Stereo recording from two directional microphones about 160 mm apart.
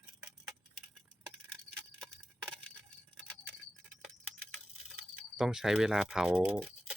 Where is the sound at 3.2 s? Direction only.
10° left (ahead or behind).